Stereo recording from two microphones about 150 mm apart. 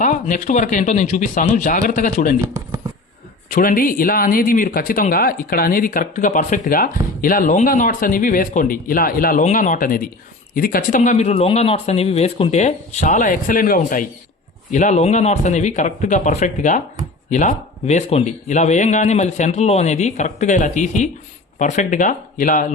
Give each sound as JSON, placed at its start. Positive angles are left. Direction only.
{"t": 0.0, "sound": "speech", "side_deg": 55}
{"t": 3.5, "sound": "a man's voice", "side_deg": 65}
{"t": 14.7, "sound": "speech", "side_deg": 55}